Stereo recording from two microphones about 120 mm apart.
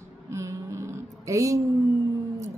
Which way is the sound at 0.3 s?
25° right (ahead or behind).